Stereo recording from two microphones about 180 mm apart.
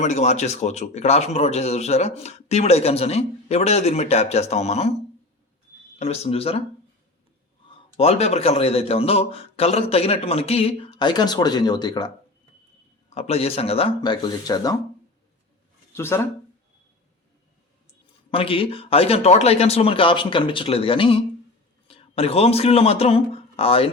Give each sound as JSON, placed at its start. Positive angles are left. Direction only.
{"t": 0.0, "sound": "speech", "side_deg": 40}
{"t": 6.0, "sound": "speech", "side_deg": 35}
{"t": 7.7, "sound": "speech", "side_deg": 35}
{"t": 13.1, "sound": "speech", "side_deg": 35}
{"t": 15.9, "sound": "speech", "side_deg": 15}
{"t": 18.3, "sound": "speech", "side_deg": 30}